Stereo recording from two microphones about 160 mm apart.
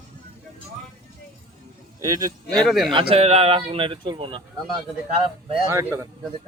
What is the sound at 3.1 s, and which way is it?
Speech, 40° right (ahead or behind).